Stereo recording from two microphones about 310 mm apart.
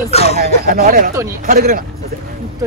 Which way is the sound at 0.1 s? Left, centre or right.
Centre.